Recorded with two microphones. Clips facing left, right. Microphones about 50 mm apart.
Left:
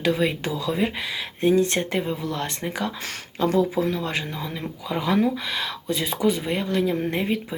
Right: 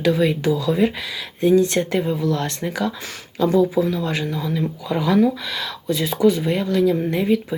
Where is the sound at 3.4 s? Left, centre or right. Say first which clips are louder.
Right 4 dB; left.